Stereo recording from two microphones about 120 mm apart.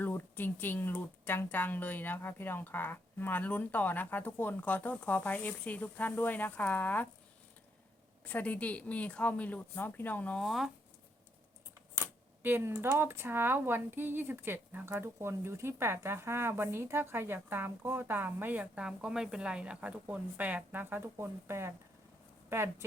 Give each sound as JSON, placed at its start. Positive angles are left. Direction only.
{"t": 0.0, "sound": "speech", "side_deg": 15}
{"t": 8.2, "sound": "speech", "side_deg": 10}
{"t": 12.4, "sound": "speech", "side_deg": -15}